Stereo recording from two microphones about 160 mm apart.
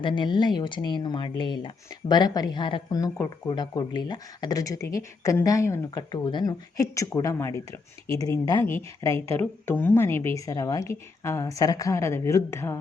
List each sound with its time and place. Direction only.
0.0 s speech: 30° left (ahead or behind)